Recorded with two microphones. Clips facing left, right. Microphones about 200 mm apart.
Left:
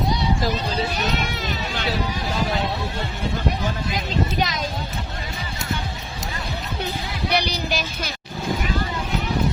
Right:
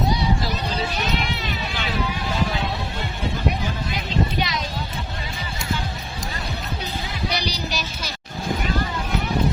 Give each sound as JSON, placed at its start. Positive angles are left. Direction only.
{"t": 4.4, "sound": "music", "side_deg": 45}
{"t": 7.3, "sound": "music", "side_deg": 55}